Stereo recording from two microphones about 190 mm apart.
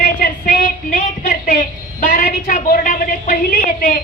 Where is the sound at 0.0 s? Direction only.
50° left (ahead or behind).